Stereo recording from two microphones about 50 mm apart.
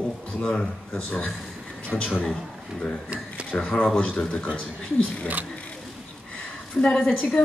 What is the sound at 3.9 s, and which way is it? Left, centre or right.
Speech, left.